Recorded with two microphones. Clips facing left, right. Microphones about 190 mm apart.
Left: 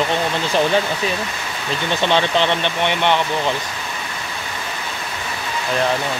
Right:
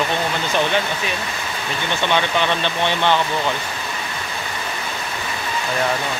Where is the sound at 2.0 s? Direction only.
30° left (ahead or behind).